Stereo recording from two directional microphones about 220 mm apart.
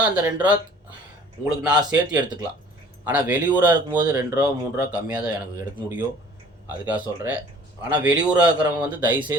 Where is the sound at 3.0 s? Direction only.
10° right (ahead or behind).